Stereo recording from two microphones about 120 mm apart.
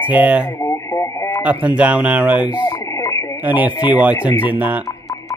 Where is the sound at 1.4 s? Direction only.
10° right (ahead or behind).